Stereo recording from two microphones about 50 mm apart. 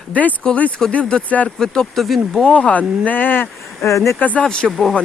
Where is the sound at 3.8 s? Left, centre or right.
Left.